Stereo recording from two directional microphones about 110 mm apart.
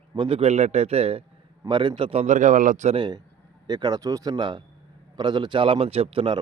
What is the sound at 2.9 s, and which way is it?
A man's voice, 45° right (ahead or behind).